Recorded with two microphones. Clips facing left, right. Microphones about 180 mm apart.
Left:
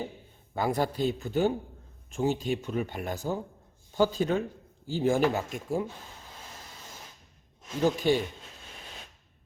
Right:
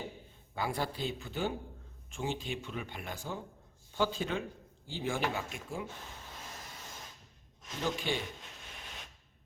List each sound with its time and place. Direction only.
0.5 s speech: 45° left (ahead or behind)
7.8 s speech: 40° left (ahead or behind)